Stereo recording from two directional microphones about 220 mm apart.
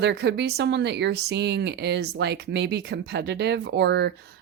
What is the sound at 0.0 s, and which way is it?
A woman's voice, 50° right (ahead or behind).